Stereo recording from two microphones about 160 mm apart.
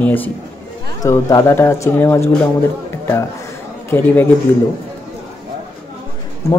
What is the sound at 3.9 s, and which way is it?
Speech, 10° left (ahead or behind).